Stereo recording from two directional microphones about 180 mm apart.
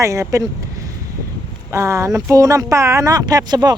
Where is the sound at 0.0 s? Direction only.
15° right (ahead or behind).